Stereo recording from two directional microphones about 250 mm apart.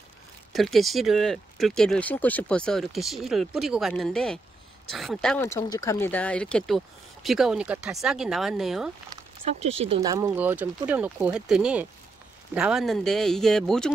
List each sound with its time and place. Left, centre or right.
0.5 s speech: centre
9.1 s speech: right
10.1 s speech: centre